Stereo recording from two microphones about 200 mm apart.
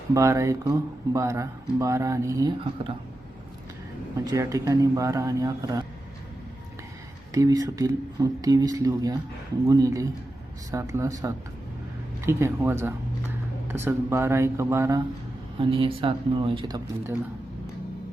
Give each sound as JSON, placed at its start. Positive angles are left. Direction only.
{"t": 0.1, "sound": "speech", "side_deg": -15}
{"t": 4.2, "sound": "speech", "side_deg": -15}
{"t": 7.3, "sound": "speech", "side_deg": -15}
{"t": 12.2, "sound": "speech", "side_deg": -10}
{"t": 15.5, "sound": "speech", "side_deg": -25}